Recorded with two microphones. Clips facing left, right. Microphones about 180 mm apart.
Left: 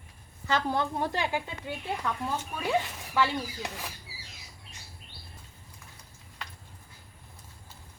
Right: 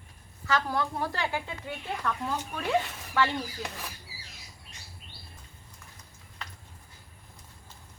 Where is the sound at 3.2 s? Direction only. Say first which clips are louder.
Even; 10° left (ahead or behind).